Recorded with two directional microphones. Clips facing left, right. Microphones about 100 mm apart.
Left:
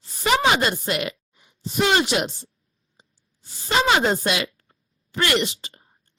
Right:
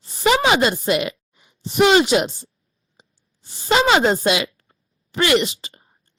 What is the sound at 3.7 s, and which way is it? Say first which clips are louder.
A woman's voice: right 4 dB; 90° right.